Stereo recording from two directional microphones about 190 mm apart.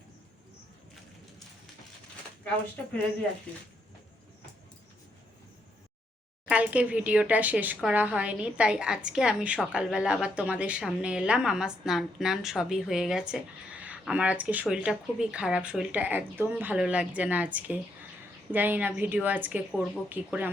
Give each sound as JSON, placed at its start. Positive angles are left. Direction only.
{"t": 6.5, "sound": "a woman's voice", "side_deg": -5}